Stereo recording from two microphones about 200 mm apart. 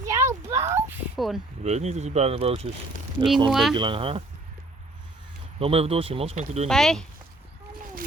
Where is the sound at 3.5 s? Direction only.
Centre (ahead or behind).